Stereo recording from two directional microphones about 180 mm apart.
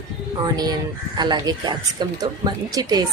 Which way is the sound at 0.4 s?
20° right (ahead or behind).